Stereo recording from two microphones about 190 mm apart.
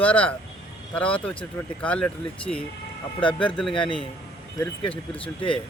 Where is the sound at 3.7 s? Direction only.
25° left (ahead or behind).